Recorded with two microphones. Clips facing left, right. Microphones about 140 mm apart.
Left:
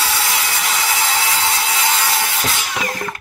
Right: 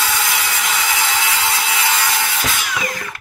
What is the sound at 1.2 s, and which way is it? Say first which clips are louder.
Ratchet: left 1 dB; 35° left (ahead or behind).